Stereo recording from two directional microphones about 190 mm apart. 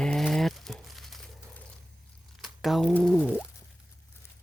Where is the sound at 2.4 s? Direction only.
Centre (ahead or behind).